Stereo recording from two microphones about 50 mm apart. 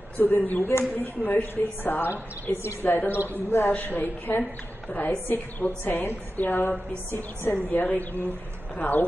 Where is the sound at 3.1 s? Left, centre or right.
Right.